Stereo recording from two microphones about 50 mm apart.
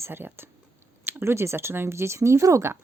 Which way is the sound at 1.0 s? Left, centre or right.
Right.